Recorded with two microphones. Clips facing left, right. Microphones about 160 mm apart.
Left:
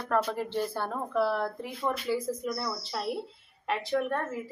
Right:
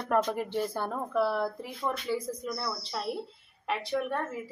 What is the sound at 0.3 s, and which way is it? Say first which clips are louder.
A woman's voice: even; 10° right (ahead or behind).